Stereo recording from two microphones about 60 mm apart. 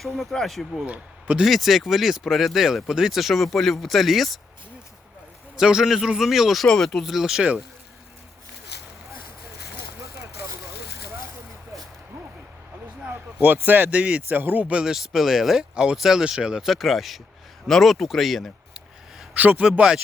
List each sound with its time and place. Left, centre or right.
0.0 s speech: centre
5.5 s speech: centre
13.1 s speech: right; by 14.9 s centre
14.9 s speech: centre
15.7 s speech: centre
16.6 s speech: centre
19.4 s a man's voice: right